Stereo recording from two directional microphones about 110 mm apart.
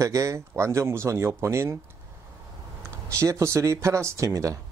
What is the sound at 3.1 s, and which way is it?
Speech, 25° right (ahead or behind).